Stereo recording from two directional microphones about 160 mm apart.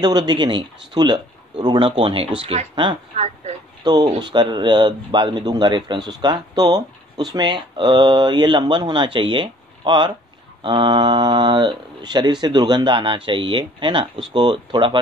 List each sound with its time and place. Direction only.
0.0 s speech: 25° right (ahead or behind)